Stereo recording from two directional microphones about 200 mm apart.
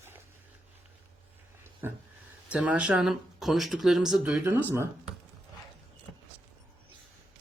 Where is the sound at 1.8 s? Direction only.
10° right (ahead or behind).